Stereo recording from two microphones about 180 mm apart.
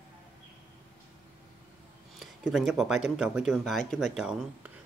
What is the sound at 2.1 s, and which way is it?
Speech, centre (ahead or behind).